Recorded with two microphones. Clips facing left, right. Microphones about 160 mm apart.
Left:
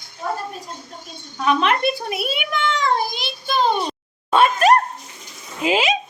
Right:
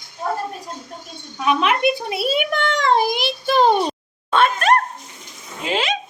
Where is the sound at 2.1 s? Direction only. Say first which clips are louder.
Right 4 dB; 30° right (ahead or behind).